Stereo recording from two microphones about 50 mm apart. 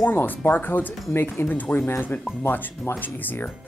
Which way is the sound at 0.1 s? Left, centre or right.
Left.